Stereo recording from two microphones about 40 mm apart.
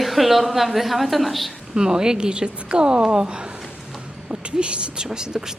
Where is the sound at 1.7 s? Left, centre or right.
Centre.